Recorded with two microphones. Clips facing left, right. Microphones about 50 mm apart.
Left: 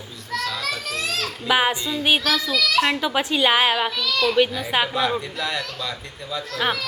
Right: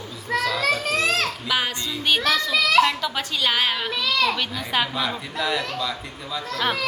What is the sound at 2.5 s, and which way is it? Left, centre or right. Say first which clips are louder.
Speech: right 4 dB; right.